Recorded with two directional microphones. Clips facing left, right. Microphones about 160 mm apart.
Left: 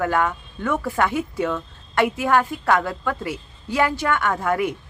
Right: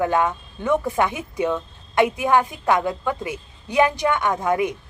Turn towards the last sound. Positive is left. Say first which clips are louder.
# right 1 dB
turn(degrees=-20)  # may be behind; listen again after turning